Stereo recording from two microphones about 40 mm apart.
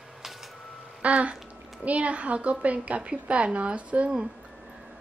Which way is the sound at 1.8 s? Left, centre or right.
Right.